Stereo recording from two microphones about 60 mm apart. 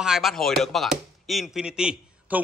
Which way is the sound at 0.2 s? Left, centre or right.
Centre.